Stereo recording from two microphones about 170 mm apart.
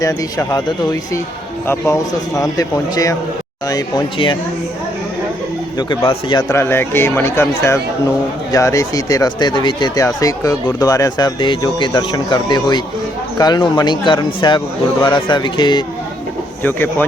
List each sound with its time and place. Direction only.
0.0 s speech: 20° left (ahead or behind)
1.6 s speech: 15° left (ahead or behind)
6.1 s speech: 25° left (ahead or behind)
16.6 s speech: 10° left (ahead or behind)